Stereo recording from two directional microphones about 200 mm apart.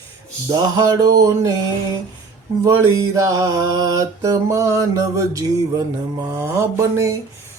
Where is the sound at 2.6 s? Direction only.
15° right (ahead or behind).